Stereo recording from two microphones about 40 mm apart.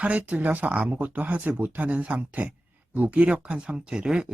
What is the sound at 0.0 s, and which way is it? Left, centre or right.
Speech, right.